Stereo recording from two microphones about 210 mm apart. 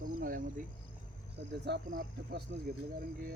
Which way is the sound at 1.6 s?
50° right (ahead or behind).